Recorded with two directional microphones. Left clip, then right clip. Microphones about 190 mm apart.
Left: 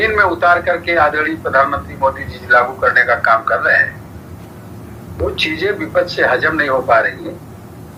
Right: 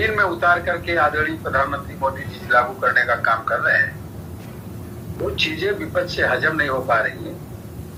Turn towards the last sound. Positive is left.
turn(degrees=50)  # may be behind; listen again after turning